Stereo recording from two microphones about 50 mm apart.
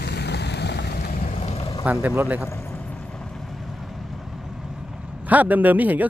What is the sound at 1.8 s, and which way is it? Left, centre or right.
Speech, right.